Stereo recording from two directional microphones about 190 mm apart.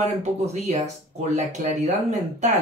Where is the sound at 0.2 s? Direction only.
35° right (ahead or behind).